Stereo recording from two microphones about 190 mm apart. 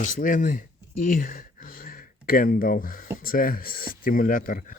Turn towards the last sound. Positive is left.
turn(degrees=45)  # may be behind; listen again after turning